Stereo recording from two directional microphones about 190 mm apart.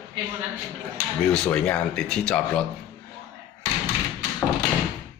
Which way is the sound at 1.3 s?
5° left (ahead or behind).